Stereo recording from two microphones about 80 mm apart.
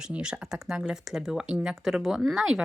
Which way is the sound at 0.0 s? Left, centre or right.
Centre.